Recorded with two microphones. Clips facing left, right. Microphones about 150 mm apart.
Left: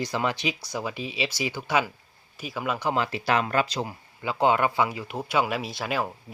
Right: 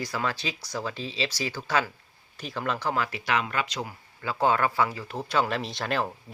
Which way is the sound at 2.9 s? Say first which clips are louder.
Left 5 dB; 25° left (ahead or behind).